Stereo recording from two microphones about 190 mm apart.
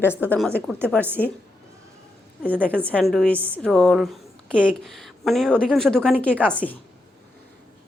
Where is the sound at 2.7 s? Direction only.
5° left (ahead or behind).